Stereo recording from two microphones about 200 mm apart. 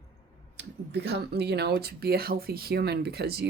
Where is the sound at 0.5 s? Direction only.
55° right (ahead or behind).